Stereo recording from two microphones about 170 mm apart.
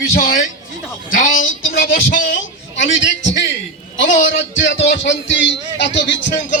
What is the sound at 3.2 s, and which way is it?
A man's voice, 90° left.